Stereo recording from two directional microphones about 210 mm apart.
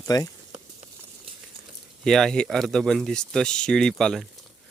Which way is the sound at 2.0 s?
Centre (ahead or behind).